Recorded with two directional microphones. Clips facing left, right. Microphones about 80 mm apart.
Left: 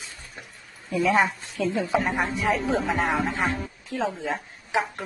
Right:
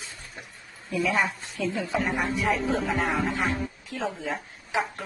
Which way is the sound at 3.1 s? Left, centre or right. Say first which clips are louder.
Left 1 dB; left.